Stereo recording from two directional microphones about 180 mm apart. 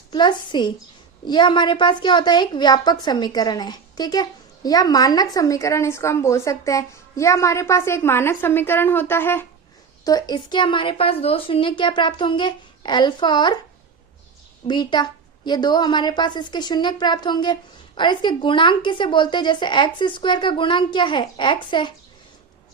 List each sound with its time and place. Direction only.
0.1 s a woman's voice: 25° left (ahead or behind)
14.7 s a woman's voice: 25° left (ahead or behind)